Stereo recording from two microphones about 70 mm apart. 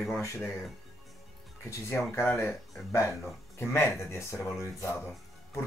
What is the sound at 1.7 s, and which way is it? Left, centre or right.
Speech, left.